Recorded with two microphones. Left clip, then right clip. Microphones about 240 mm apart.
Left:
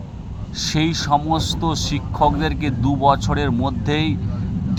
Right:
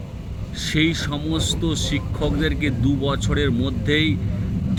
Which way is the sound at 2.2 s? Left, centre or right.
Left.